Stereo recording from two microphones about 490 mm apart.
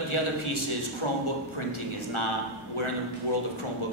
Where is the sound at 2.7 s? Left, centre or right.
Left.